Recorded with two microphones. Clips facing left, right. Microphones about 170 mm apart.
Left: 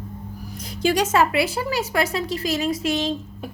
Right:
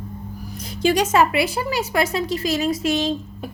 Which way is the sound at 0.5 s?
25° right (ahead or behind).